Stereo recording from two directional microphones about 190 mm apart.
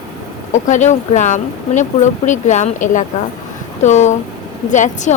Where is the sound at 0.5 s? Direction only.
40° left (ahead or behind).